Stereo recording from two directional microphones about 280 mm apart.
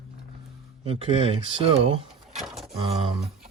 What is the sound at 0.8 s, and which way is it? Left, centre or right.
Speech, right.